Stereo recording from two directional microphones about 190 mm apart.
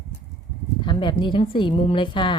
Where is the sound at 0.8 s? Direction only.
25° left (ahead or behind).